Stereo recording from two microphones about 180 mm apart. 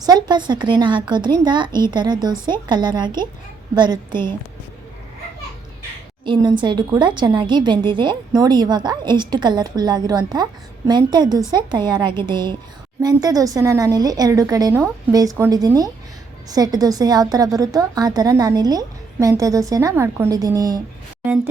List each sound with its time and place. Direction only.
0.0 s a woman's voice: 25° right (ahead or behind)
6.2 s a woman's voice: 25° right (ahead or behind)